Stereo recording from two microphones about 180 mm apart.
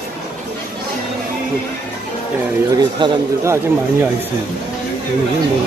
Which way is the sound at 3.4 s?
15° right (ahead or behind).